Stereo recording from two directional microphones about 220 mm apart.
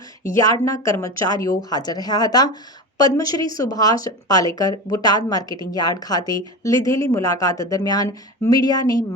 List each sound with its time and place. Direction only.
0.2 s speech: 15° left (ahead or behind)